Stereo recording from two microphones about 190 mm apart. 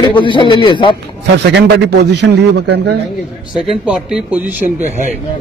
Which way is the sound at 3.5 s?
5° right (ahead or behind).